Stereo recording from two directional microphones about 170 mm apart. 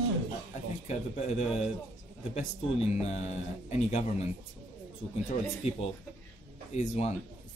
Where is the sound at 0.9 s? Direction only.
40° left (ahead or behind).